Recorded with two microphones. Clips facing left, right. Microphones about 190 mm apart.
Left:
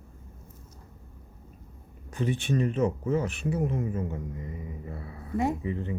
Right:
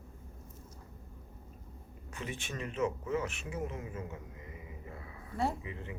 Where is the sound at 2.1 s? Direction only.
35° left (ahead or behind).